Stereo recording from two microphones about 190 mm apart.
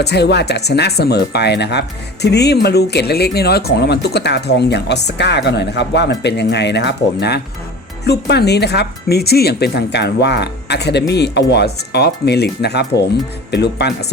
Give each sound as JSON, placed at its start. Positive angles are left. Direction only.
{"t": 0.0, "sound": "speech", "side_deg": 60}